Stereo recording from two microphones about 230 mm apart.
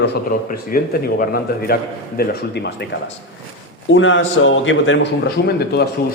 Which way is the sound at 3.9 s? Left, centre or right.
Left.